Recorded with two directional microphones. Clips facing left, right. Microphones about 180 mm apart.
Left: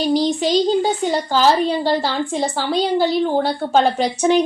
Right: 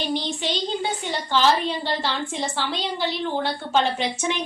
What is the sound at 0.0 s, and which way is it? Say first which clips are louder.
A child's voice: left 9 dB; 40° left (ahead or behind).